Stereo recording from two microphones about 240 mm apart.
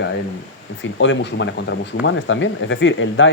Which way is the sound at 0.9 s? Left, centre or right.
Left.